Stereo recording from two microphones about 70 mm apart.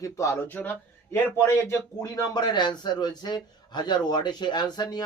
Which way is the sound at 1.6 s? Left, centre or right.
Left.